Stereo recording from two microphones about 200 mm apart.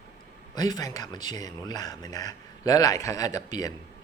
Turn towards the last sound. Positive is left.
turn(degrees=20)  # may be behind; listen again after turning